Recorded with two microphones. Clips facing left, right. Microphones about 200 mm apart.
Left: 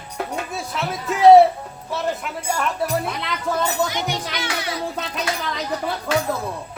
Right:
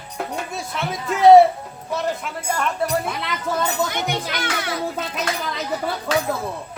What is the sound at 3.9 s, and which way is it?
Speech, 55° right (ahead or behind).